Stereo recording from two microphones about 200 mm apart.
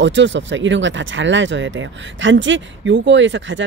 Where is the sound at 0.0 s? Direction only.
65° right (ahead or behind).